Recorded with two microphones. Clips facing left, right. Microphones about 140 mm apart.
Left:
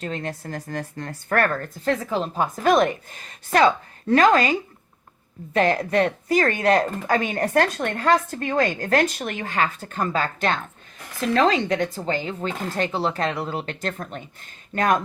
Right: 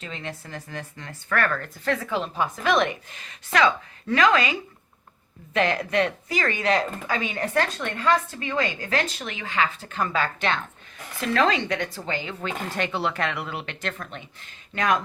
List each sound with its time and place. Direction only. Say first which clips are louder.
0.0 s speech: left 6 dB; 45° left (ahead or behind)
5.5 s speech: left 3 dB; 40° left (ahead or behind)
11.3 s speech: left 3 dB; 40° left (ahead or behind)